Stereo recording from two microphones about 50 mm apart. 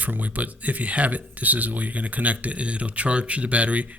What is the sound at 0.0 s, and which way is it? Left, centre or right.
Speech, right.